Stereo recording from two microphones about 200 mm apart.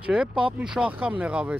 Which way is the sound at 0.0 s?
5° right (ahead or behind).